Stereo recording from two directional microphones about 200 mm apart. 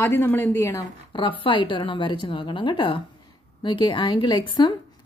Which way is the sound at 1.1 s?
25° left (ahead or behind).